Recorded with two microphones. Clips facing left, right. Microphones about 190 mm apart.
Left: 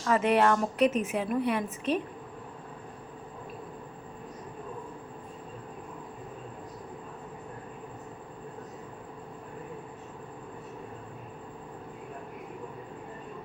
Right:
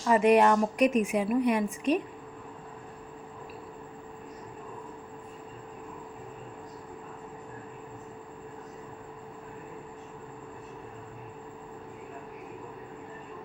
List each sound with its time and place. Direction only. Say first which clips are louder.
0.0 s a woman's voice: right 3 dB; 15° right (ahead or behind)